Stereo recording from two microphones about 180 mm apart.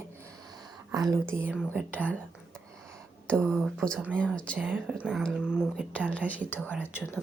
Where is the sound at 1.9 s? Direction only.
10° left (ahead or behind).